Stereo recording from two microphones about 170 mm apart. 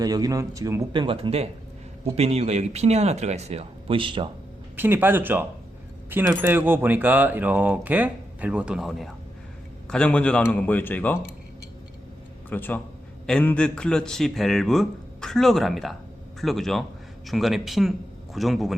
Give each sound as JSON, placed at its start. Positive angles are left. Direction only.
{"t": 0.0, "sound": "speech", "side_deg": -20}
{"t": 0.9, "sound": "speech", "side_deg": -30}
{"t": 4.8, "sound": "a man's voice", "side_deg": -10}
{"t": 12.5, "sound": "a man's voice", "side_deg": 10}